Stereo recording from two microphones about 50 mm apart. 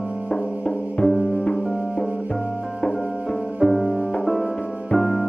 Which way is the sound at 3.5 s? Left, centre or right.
Centre.